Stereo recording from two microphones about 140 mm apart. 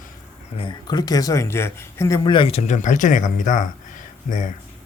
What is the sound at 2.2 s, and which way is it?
Speech, 35° left (ahead or behind).